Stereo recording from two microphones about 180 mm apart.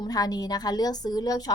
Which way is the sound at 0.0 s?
20° left (ahead or behind).